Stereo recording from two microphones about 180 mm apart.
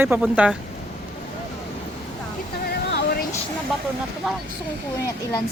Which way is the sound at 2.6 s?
55° left (ahead or behind).